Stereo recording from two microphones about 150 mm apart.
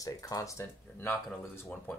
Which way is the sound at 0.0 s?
25° left (ahead or behind).